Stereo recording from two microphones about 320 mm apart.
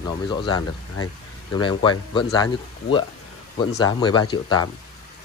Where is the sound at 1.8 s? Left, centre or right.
Centre.